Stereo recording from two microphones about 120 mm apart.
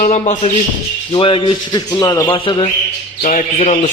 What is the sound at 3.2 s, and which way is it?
Speech, 80° left.